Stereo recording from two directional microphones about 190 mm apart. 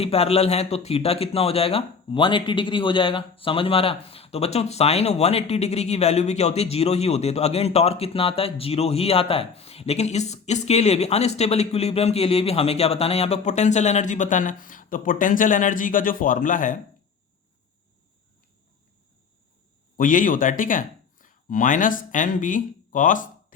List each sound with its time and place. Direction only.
0.0 s speech: 30° left (ahead or behind)
20.0 s speech: 45° left (ahead or behind)